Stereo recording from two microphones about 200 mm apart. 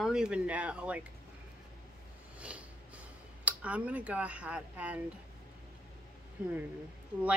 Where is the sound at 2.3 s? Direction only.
5° right (ahead or behind).